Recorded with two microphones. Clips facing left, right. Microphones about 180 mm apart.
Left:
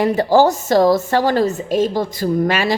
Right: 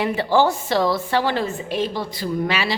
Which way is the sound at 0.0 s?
40° left (ahead or behind).